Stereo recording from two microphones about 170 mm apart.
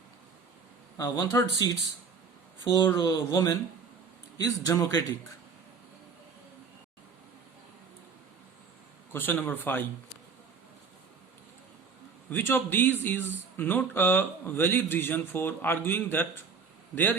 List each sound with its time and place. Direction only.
0.9 s speech: 25° left (ahead or behind)
2.6 s speech: 20° left (ahead or behind)
9.1 s speech: 10° left (ahead or behind)
12.3 s speech: 10° left (ahead or behind)